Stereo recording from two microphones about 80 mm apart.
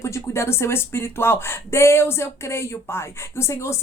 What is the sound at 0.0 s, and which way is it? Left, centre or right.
Speech, left.